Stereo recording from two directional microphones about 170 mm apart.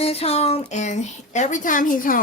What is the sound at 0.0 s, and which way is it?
Speech, 35° left (ahead or behind).